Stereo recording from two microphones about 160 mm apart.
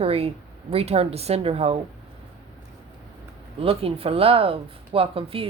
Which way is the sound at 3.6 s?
35° right (ahead or behind).